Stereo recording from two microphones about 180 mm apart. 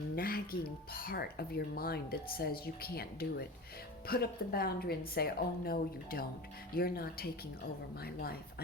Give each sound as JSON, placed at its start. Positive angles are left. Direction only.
{"t": 0.2, "sound": "speech", "side_deg": 55}